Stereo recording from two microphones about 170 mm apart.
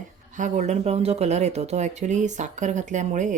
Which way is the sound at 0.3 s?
45° right (ahead or behind).